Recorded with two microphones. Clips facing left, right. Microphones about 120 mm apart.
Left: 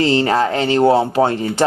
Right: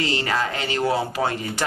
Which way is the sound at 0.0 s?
35° left (ahead or behind).